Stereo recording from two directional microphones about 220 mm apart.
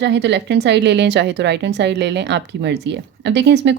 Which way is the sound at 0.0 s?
55° right (ahead or behind).